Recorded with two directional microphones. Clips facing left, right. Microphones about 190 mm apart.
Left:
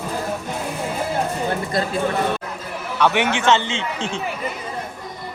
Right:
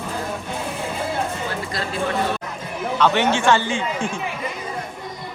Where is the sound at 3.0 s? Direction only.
15° left (ahead or behind).